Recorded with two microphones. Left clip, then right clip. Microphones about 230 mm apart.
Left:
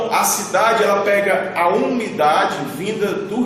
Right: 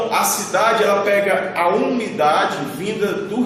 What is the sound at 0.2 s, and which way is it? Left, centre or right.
A man's voice, centre.